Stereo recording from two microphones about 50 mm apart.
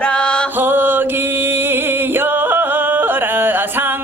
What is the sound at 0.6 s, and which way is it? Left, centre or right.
Music, right.